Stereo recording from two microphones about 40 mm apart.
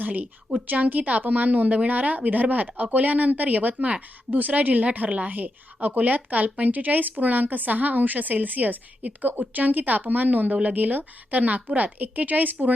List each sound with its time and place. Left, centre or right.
0.0 s a woman's voice: right